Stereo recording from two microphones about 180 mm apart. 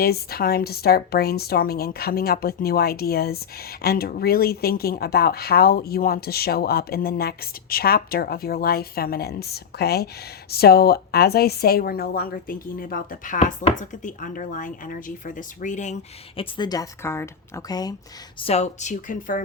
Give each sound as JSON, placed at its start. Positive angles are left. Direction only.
{"t": 0.0, "sound": "a woman's voice", "side_deg": 60}
{"t": 16.4, "sound": "a woman's voice", "side_deg": 25}
{"t": 18.3, "sound": "speech", "side_deg": 35}